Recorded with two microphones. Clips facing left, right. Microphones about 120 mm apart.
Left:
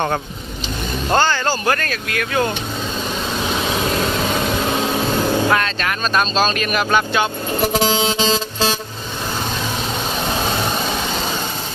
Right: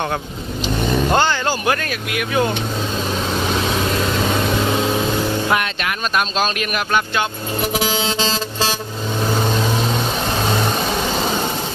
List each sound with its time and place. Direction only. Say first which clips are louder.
1.1 s speech: left 5 dB; 15° right (ahead or behind)
5.5 s speech: left 1 dB; 10° right (ahead or behind)
7.7 s vehicle: left 2 dB; 25° left (ahead or behind)